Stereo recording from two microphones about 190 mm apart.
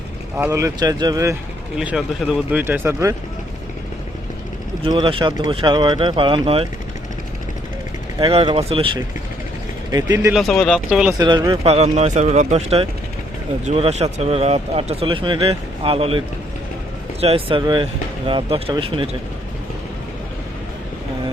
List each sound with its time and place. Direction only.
0.3 s speech: 15° right (ahead or behind)
1.8 s speech: 5° right (ahead or behind)
4.8 s speech: 25° right (ahead or behind)
8.2 s speech: 30° right (ahead or behind)
10.3 s speech: centre (ahead or behind)
11.2 s speech: 25° right (ahead or behind)